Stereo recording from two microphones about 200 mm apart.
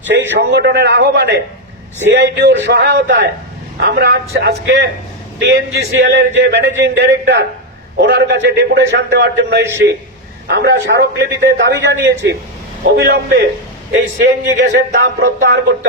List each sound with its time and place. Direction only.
0.1 s a man's voice: 60° right (ahead or behind)